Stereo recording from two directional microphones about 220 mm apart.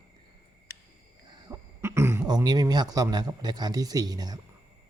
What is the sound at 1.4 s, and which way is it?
Speech, 10° right (ahead or behind).